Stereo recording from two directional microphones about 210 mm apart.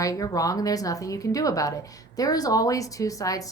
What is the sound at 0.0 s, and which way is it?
Speech, 15° left (ahead or behind).